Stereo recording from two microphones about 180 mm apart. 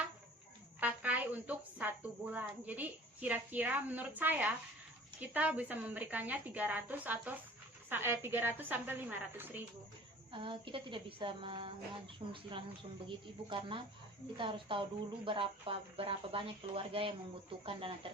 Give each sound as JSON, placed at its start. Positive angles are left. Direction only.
{"t": 0.8, "sound": "a sound", "side_deg": -10}
{"t": 5.2, "sound": "a woman's voice", "side_deg": -10}
{"t": 10.3, "sound": "speech", "side_deg": -30}